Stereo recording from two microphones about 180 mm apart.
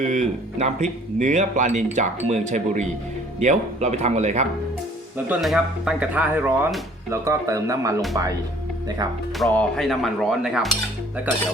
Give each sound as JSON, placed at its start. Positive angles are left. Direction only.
{"t": 0.0, "sound": "speech", "side_deg": -45}
{"t": 5.1, "sound": "speech", "side_deg": -5}
{"t": 9.6, "sound": "speech", "side_deg": 0}